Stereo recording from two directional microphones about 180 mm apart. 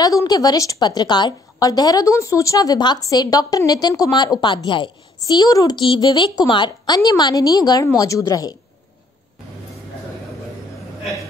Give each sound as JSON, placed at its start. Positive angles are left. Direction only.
{"t": 0.0, "sound": "a woman's voice", "side_deg": 20}